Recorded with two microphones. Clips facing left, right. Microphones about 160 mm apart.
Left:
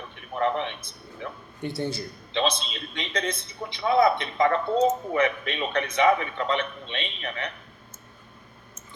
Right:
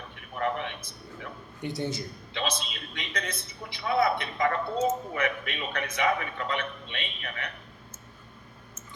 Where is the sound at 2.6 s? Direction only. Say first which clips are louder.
Left 5 dB; 25° left (ahead or behind).